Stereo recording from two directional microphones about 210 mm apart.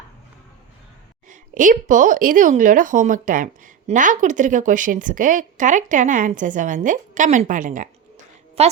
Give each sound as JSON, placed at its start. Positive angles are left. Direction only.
{"t": 1.3, "sound": "a woman's voice", "side_deg": -40}